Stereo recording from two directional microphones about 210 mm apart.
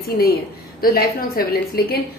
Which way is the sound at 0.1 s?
45° left (ahead or behind).